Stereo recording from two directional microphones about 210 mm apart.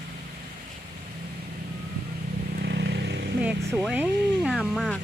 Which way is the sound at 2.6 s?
50° right (ahead or behind).